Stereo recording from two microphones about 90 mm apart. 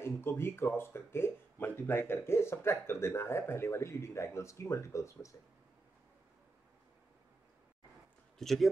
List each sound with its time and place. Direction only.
0.0 s speech: 25° left (ahead or behind)
8.4 s speech: centre (ahead or behind)